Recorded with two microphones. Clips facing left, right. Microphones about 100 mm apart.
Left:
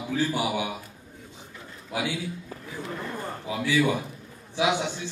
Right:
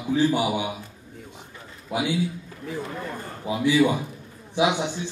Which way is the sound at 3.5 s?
20° right (ahead or behind).